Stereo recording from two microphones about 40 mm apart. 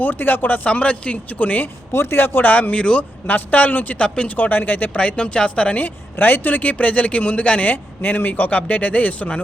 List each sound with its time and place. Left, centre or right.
0.0 s speech: left
0.7 s speech: left
1.9 s speech: left
2.5 s speech: left
2.7 s speech: left
3.2 s speech: left
4.9 s speech: left
6.1 s speech: left
7.7 s speech: left